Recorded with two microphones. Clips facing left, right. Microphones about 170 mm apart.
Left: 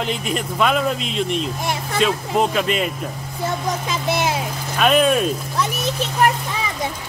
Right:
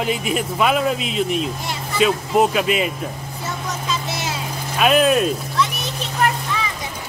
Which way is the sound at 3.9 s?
55° left (ahead or behind).